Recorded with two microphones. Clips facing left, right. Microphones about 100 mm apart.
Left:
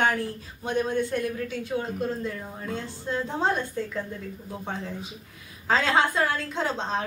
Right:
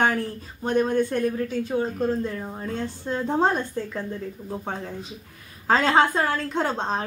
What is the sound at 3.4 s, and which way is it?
Speech, 45° right (ahead or behind).